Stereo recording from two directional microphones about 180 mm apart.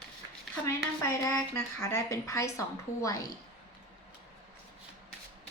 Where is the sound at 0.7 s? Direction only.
15° left (ahead or behind).